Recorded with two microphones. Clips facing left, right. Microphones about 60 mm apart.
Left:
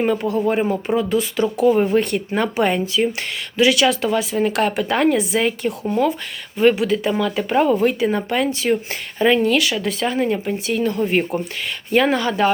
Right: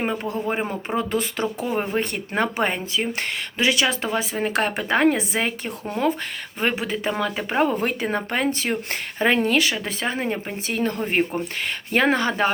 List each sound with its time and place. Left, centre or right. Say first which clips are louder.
0.0 s speech: left 6 dB; centre
0.9 s speech: left 3 dB; right
10.7 s speech: left 4 dB; right